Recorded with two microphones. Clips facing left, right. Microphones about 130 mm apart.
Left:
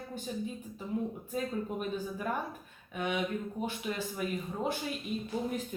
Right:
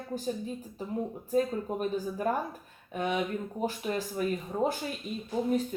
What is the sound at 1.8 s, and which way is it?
Speech, 40° right (ahead or behind).